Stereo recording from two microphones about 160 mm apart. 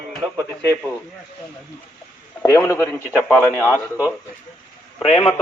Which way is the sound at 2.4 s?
20° left (ahead or behind).